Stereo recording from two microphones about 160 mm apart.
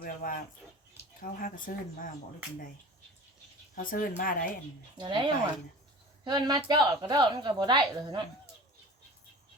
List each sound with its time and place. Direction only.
0.0 s speech: 60° left (ahead or behind)
3.8 s speech: 60° left (ahead or behind)
4.9 s speech: 30° right (ahead or behind)
6.2 s speech: 25° right (ahead or behind)